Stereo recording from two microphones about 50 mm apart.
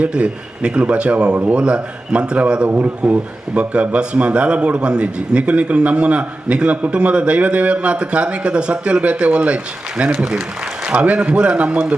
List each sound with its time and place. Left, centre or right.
0.0 s speech: right
10.8 s speech: right